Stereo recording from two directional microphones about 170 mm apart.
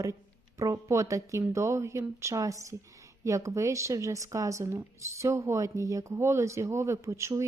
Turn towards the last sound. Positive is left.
turn(degrees=-15)  # may be behind; listen again after turning